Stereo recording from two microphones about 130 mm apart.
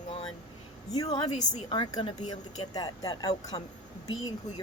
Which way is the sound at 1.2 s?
55° left (ahead or behind).